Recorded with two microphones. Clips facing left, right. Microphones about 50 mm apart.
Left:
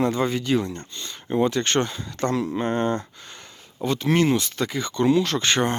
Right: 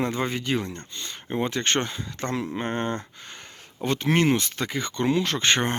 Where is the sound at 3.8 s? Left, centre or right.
Right.